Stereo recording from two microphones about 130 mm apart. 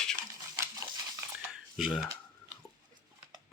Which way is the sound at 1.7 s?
Centre (ahead or behind).